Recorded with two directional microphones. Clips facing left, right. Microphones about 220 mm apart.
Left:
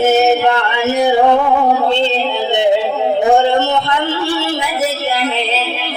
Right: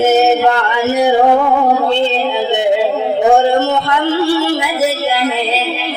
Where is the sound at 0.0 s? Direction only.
15° right (ahead or behind).